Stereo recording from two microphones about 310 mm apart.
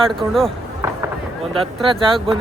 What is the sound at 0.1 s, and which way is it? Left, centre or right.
Speech, centre.